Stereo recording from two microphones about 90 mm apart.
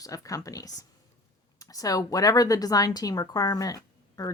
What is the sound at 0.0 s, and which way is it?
A woman's voice, 40° left (ahead or behind).